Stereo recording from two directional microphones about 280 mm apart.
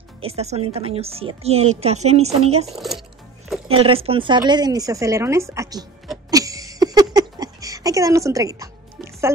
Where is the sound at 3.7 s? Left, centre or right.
Centre.